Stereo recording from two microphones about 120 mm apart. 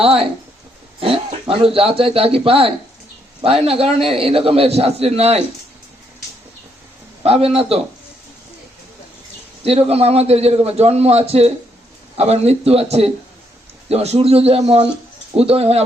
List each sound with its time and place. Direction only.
0.0 s a man's voice: 55° right (ahead or behind)
7.3 s a man's voice: 55° right (ahead or behind)
9.6 s a man's voice: 55° right (ahead or behind)